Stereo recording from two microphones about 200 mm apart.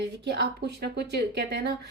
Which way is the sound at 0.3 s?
55° right (ahead or behind).